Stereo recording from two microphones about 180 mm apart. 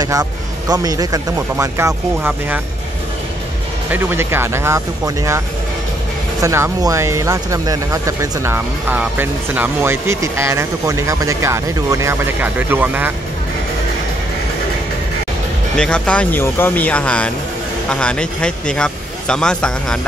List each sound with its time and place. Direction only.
0.0 s speech: 20° right (ahead or behind)
3.9 s speech: 10° right (ahead or behind)
6.4 s speech: 15° right (ahead or behind)
15.7 s speech: 5° left (ahead or behind)